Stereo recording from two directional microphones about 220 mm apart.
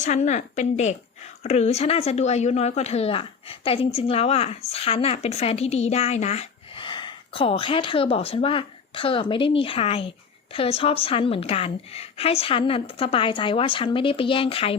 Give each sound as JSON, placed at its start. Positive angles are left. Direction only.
{"t": 0.0, "sound": "a woman's voice", "side_deg": 30}